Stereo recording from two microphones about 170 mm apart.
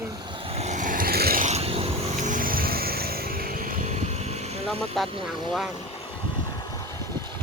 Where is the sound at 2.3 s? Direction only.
55° right (ahead or behind); by 4.9 s 35° right (ahead or behind).